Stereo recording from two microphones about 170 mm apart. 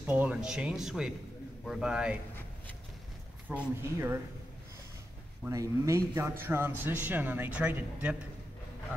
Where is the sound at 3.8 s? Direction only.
15° right (ahead or behind).